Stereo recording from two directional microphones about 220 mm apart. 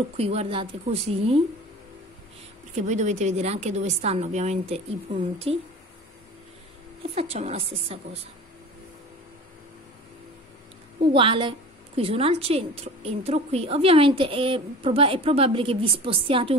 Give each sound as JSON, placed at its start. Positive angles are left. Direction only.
{"t": 0.2, "sound": "a woman's voice", "side_deg": -25}
{"t": 2.7, "sound": "a woman's voice", "side_deg": -30}
{"t": 7.2, "sound": "a woman's voice", "side_deg": -30}
{"t": 11.1, "sound": "a woman's voice", "side_deg": -25}